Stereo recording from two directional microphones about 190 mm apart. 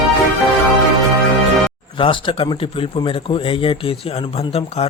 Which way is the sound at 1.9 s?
25° left (ahead or behind).